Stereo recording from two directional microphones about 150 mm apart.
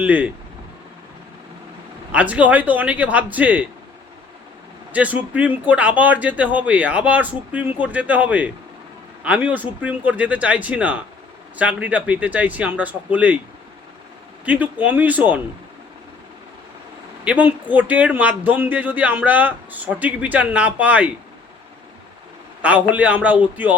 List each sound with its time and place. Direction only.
0.0 s speech: 10° right (ahead or behind)
2.1 s speech: 10° right (ahead or behind)
4.9 s speech: 10° right (ahead or behind)
14.4 s speech: 10° right (ahead or behind)
17.2 s speech: 10° right (ahead or behind)
22.6 s speech: 10° right (ahead or behind)